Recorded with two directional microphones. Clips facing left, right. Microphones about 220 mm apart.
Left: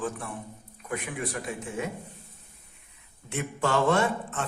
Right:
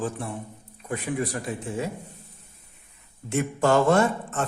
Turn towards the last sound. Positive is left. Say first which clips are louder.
# right 4 dB
turn(degrees=-40)  # may be behind; listen again after turning